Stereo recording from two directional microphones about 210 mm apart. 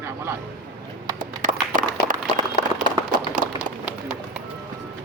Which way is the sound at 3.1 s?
40° right (ahead or behind).